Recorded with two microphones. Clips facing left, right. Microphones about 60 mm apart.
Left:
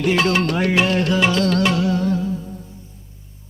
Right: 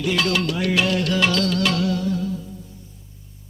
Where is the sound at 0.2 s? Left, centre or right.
Left.